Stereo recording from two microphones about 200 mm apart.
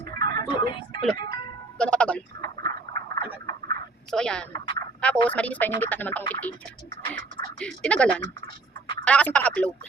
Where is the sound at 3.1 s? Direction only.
20° left (ahead or behind).